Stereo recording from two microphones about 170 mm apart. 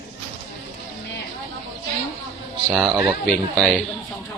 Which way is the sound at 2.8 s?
25° right (ahead or behind).